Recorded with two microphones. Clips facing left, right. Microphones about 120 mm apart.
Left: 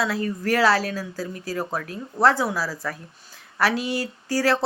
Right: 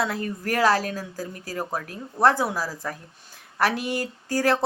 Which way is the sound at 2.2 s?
10° right (ahead or behind).